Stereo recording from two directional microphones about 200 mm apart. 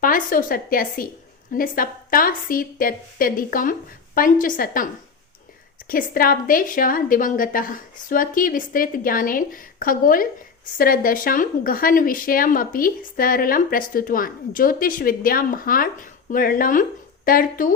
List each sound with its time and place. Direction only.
0.0 s speech: 45° left (ahead or behind)
5.9 s speech: 45° left (ahead or behind)